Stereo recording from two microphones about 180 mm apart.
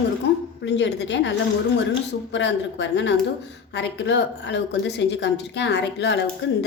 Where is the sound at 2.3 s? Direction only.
80° left.